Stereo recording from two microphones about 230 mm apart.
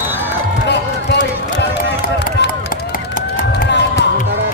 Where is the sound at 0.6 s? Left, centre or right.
Left.